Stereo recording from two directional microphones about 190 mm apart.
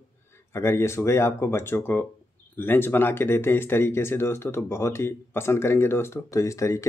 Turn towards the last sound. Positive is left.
turn(degrees=15)  # may be behind; listen again after turning